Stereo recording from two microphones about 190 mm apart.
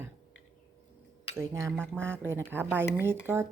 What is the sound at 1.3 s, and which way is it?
Speech, 15° right (ahead or behind).